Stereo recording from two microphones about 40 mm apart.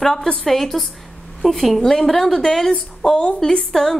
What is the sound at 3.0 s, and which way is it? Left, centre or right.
Speech, centre.